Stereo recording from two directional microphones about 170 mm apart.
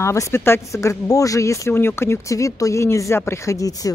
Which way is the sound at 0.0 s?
15° left (ahead or behind).